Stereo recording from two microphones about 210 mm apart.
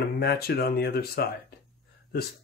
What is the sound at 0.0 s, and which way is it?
Speech, 50° left (ahead or behind).